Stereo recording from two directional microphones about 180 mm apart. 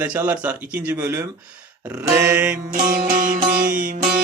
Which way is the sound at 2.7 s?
50° right (ahead or behind).